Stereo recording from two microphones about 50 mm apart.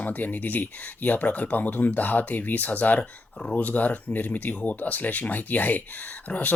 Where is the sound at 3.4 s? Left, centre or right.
Centre.